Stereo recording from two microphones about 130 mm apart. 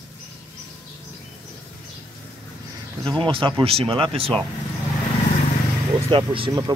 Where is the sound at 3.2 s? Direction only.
40° right (ahead or behind).